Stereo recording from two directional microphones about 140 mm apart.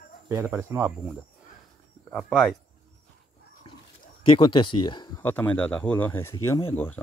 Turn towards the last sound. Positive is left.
turn(degrees=10)  # may be behind; listen again after turning